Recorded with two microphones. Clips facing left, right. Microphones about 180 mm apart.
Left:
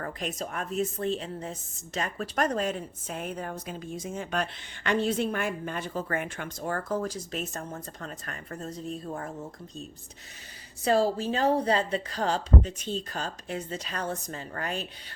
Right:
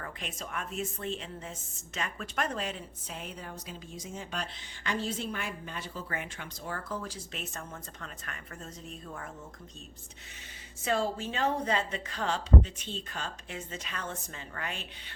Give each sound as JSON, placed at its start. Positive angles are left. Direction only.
{"t": 0.0, "sound": "a woman's voice", "side_deg": 40}
{"t": 10.8, "sound": "a woman's voice", "side_deg": 35}